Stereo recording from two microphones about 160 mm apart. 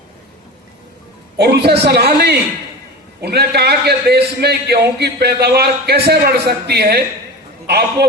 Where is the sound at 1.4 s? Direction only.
90° right.